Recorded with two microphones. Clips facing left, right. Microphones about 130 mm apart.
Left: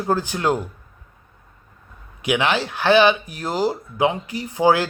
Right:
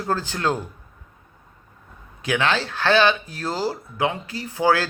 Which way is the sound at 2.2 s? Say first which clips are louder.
Left 2 dB; 15° left (ahead or behind).